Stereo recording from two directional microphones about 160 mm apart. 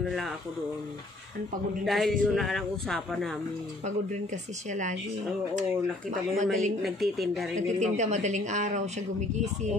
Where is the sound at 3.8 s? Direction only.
50° right (ahead or behind).